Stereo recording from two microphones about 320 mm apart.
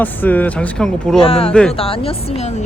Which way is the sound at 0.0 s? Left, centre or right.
Centre.